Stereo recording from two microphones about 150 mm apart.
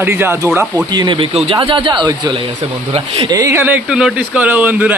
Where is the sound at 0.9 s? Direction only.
30° right (ahead or behind).